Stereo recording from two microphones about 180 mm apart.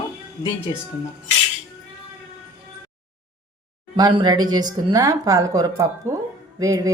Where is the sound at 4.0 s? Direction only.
25° right (ahead or behind).